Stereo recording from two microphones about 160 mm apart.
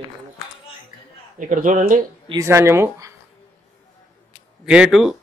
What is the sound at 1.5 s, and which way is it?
Speech, 50° right (ahead or behind).